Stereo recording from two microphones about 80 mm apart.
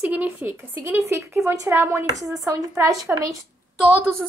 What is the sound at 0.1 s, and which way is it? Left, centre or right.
A woman's voice, right.